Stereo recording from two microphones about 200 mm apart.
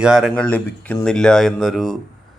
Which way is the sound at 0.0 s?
5° right (ahead or behind).